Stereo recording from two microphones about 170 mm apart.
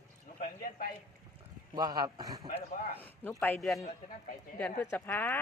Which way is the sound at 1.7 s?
25° right (ahead or behind).